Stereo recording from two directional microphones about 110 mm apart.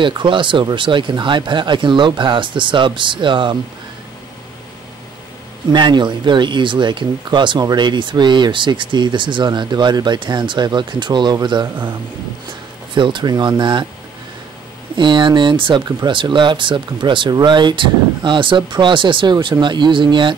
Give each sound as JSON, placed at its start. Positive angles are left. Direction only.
{"t": 0.0, "sound": "speech", "side_deg": -45}
{"t": 5.7, "sound": "speech", "side_deg": -45}
{"t": 12.9, "sound": "speech", "side_deg": -45}
{"t": 15.0, "sound": "speech", "side_deg": -45}